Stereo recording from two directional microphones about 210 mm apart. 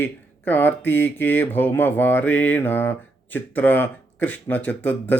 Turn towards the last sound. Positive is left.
turn(degrees=10)  # may be behind; listen again after turning